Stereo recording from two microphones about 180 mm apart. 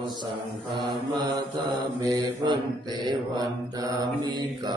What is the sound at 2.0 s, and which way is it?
Mantra, 20° right (ahead or behind).